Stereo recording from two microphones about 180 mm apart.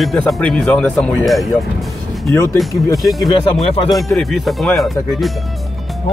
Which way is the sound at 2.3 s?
15° left (ahead or behind).